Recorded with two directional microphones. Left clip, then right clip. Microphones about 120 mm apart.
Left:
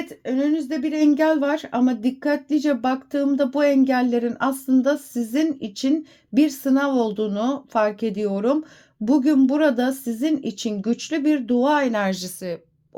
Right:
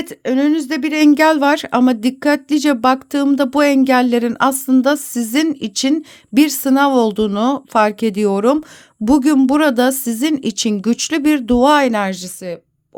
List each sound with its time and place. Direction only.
0.1 s speech: 90° right; by 8.5 s 60° right (ahead or behind)
9.0 s speech: 70° right (ahead or behind)
11.7 s speech: 40° right (ahead or behind)
11.9 s speech: 20° right (ahead or behind)